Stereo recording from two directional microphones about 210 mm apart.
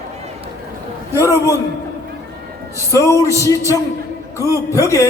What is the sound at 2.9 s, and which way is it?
Speech, 15° left (ahead or behind).